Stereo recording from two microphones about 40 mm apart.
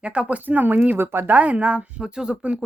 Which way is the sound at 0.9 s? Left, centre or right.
Right.